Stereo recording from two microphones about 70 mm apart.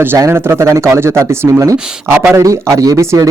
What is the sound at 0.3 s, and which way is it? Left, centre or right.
Speech, right.